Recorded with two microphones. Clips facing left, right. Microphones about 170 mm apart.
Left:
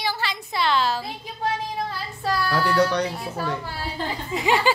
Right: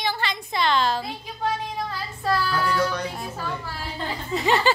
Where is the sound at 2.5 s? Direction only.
75° left (ahead or behind).